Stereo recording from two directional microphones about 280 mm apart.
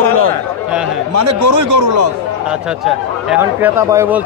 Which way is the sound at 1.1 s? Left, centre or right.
Right.